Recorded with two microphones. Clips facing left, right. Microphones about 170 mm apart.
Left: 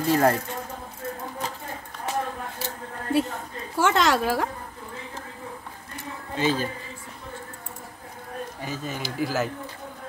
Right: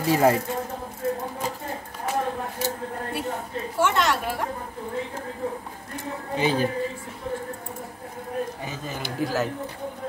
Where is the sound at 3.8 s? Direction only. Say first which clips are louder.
Left 2 dB; 90° left.